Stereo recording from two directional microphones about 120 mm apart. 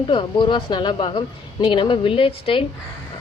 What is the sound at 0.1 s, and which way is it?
A woman's voice, 45° left (ahead or behind).